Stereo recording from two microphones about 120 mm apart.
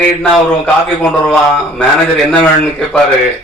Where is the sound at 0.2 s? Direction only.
5° left (ahead or behind).